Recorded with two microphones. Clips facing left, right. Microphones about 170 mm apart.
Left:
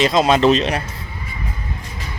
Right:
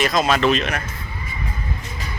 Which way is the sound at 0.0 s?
25° left (ahead or behind).